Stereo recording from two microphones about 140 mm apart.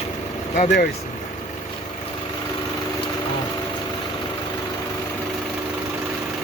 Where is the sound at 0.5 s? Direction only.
60° left (ahead or behind).